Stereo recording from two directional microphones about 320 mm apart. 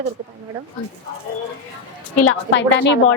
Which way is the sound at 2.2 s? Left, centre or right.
Left.